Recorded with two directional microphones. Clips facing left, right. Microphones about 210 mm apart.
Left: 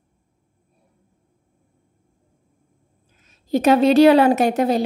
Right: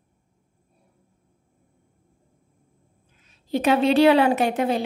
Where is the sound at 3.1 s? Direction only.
45° left (ahead or behind).